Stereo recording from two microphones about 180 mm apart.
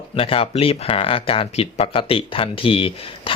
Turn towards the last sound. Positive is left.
turn(degrees=30)  # may be behind; listen again after turning